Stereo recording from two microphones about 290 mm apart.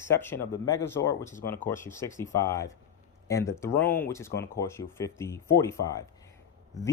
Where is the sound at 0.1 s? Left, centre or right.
Centre.